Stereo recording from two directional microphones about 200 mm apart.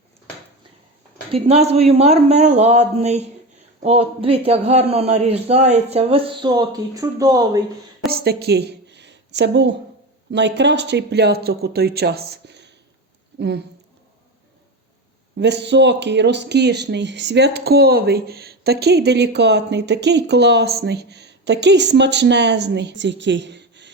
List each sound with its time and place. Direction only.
1.3 s a man's voice: 30° right (ahead or behind)
8.0 s a sound: 50° right (ahead or behind)
10.3 s speech: 60° right (ahead or behind)
15.4 s speech: 60° right (ahead or behind)